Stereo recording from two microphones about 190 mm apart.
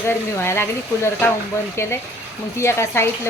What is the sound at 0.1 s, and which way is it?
A woman's voice, 15° left (ahead or behind).